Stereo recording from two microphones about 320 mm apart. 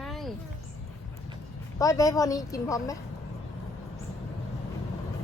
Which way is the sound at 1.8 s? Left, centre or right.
Centre.